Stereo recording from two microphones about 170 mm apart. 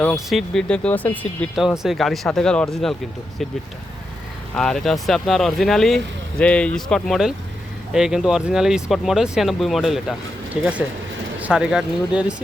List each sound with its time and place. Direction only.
0.0 s speech: centre (ahead or behind)
1.5 s speech: centre (ahead or behind)
4.5 s speech: 5° left (ahead or behind)